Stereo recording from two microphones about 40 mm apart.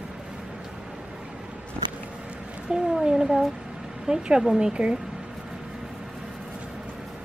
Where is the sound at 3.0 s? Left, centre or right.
Centre.